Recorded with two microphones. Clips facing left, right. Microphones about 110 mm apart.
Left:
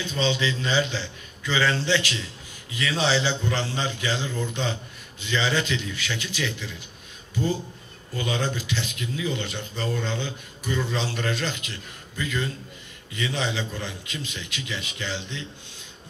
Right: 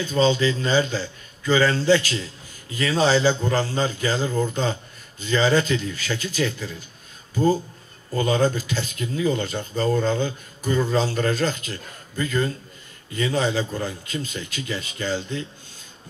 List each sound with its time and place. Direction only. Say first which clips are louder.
0.0 s speech: right 6 dB; 40° right (ahead or behind)